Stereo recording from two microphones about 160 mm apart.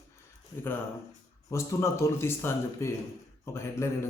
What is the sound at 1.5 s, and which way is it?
Speech, 20° left (ahead or behind).